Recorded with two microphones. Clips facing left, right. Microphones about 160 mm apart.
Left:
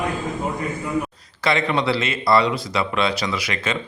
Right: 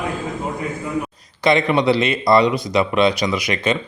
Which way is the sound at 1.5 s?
15° right (ahead or behind).